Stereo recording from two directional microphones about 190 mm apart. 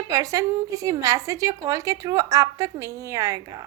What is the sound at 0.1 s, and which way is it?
A woman's voice, 20° right (ahead or behind).